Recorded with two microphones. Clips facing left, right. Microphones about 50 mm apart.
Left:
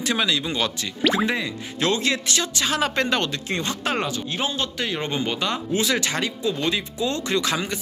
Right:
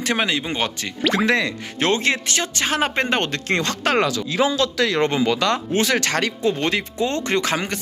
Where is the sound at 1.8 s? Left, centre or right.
Right.